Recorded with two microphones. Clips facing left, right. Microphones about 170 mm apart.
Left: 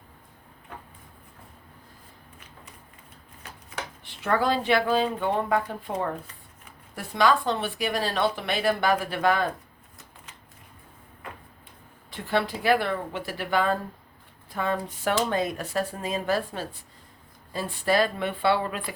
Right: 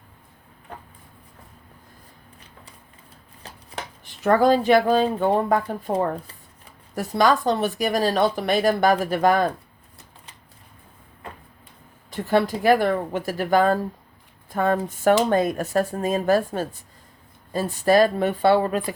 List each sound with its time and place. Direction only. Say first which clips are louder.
3.4 s a woman's voice: right 2 dB; 35° right (ahead or behind)
12.1 s a woman's voice: right 6 dB; 45° right (ahead or behind)